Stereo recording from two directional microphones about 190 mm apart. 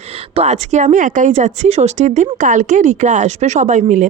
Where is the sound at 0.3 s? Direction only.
35° right (ahead or behind).